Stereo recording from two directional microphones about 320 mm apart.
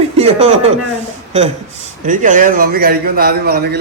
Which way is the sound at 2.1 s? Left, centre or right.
Right.